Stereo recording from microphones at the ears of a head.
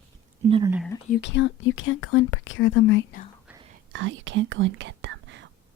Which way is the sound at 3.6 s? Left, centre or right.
Right.